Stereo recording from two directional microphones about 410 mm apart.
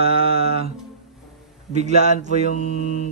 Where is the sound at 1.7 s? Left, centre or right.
Centre.